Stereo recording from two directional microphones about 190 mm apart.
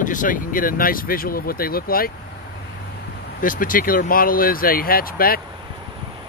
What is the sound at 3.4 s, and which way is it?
Speech, 45° left (ahead or behind).